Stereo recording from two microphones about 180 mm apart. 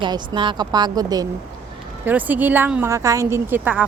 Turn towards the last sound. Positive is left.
turn(degrees=-10)  # may be behind; listen again after turning